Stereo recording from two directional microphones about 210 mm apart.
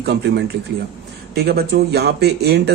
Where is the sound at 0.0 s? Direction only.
50° right (ahead or behind).